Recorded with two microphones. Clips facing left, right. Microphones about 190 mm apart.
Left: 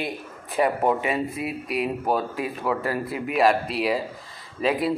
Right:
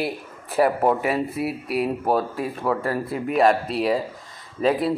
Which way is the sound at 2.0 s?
30° right (ahead or behind).